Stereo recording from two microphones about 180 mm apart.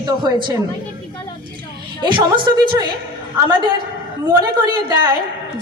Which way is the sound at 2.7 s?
25° right (ahead or behind).